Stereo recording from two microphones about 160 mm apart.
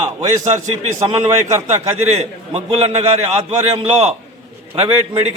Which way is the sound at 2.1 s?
40° right (ahead or behind).